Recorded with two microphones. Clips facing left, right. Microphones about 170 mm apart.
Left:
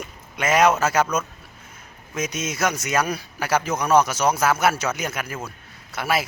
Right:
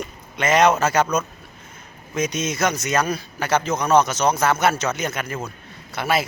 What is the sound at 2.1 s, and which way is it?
Speech, 5° left (ahead or behind).